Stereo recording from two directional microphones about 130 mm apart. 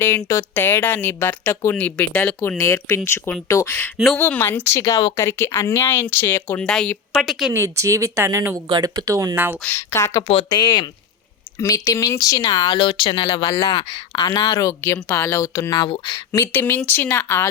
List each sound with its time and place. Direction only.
0.0 s speech: 20° left (ahead or behind)
3.9 s speech: centre (ahead or behind)
4.2 s speech: 15° left (ahead or behind)
7.5 s speech: 20° right (ahead or behind)
9.6 s speech: 15° left (ahead or behind)
10.5 s speech: 35° left (ahead or behind)
11.5 s speech: 25° left (ahead or behind)
12.6 s speech: 40° left (ahead or behind)
16.4 s speech: 15° left (ahead or behind)